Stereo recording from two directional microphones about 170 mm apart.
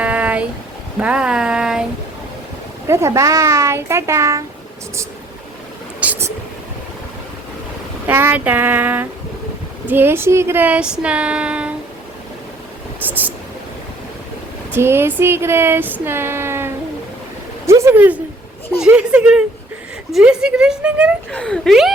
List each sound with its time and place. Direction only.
0.0 s a sound: 10° right (ahead or behind)
0.9 s a woman's voice: 5° right (ahead or behind)
2.8 s speech: 15° right (ahead or behind)
6.0 s whispering: 10° right (ahead or behind)
8.0 s speech: 10° right (ahead or behind)
13.1 s speech: 10° right (ahead or behind)
14.7 s a sound: 15° right (ahead or behind)
15.2 s a woman's voice: 15° right (ahead or behind)
21.3 s a woman's voice: 5° left (ahead or behind)